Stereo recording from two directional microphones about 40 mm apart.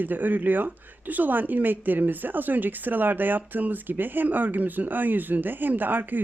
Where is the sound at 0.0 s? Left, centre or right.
Right.